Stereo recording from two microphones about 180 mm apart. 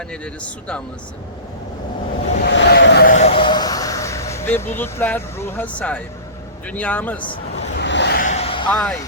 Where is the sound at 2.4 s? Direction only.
70° left (ahead or behind).